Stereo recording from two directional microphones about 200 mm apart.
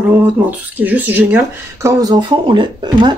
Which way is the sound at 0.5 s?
10° right (ahead or behind).